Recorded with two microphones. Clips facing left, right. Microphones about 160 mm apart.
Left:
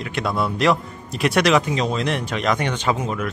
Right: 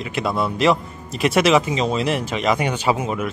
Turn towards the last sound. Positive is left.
turn(degrees=-5)  # may be behind; listen again after turning